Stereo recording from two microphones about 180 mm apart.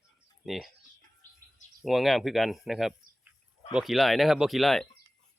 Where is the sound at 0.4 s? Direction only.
Centre (ahead or behind).